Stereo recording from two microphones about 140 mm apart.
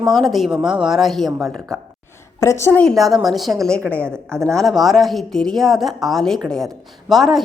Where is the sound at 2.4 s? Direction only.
20° left (ahead or behind).